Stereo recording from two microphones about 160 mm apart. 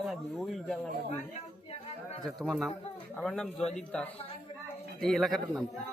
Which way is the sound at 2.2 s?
Centre (ahead or behind).